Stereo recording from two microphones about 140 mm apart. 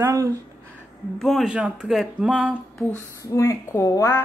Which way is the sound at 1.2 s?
Centre (ahead or behind).